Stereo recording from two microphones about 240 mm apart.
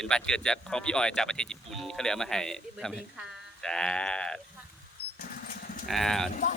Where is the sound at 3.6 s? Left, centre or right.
Centre.